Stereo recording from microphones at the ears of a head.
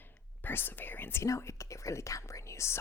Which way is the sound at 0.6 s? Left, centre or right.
Left.